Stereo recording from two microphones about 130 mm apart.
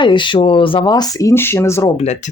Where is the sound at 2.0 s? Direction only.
60° left (ahead or behind).